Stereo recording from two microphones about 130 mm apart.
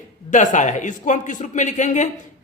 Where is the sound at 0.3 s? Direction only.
70° left (ahead or behind).